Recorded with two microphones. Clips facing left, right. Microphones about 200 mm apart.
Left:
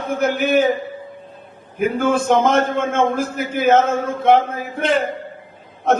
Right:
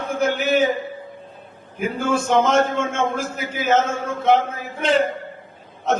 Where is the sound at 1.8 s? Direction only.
55° left (ahead or behind).